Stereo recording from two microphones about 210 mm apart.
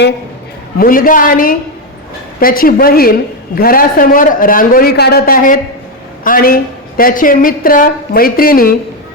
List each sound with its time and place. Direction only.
0.8 s a woman's voice: 40° left (ahead or behind)